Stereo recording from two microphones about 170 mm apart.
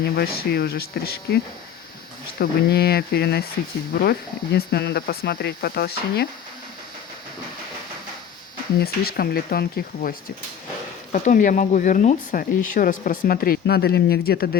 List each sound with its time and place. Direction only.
0.0 s speech: 60° left (ahead or behind)
2.4 s speech: 65° left (ahead or behind)
4.5 s speech: 70° left (ahead or behind)
8.8 s speech: 65° left (ahead or behind)
11.1 s speech: 50° left (ahead or behind); by 14.6 s 65° left (ahead or behind)